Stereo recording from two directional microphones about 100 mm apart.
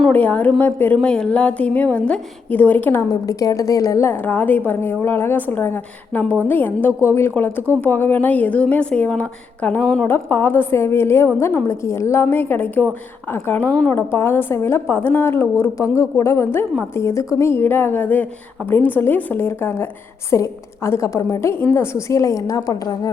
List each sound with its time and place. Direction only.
0.1 s a woman's voice: 15° left (ahead or behind)
3.1 s a woman's voice: 35° left (ahead or behind); by 10.1 s 10° left (ahead or behind)
10.1 s a woman's voice: 20° left (ahead or behind)
13.9 s a woman's voice: 25° left (ahead or behind); by 23.0 s 40° left (ahead or behind)